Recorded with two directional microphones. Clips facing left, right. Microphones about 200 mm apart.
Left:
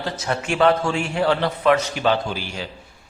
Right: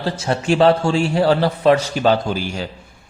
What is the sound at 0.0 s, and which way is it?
A man's voice, 30° right (ahead or behind).